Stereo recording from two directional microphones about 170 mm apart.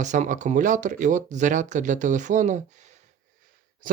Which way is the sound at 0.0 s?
45° right (ahead or behind).